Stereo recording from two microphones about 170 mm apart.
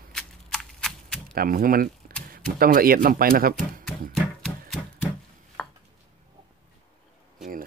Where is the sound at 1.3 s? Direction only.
60° right (ahead or behind).